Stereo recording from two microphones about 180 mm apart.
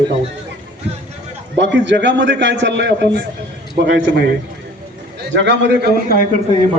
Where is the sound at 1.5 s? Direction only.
75° right (ahead or behind).